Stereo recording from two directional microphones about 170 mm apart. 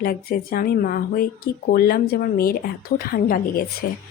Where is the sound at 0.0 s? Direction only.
60° left (ahead or behind).